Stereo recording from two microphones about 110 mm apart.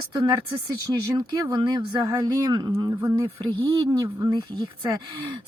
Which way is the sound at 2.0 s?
30° right (ahead or behind).